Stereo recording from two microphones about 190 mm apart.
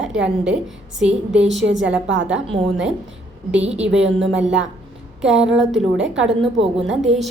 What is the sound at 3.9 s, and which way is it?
Speech, 75° right (ahead or behind).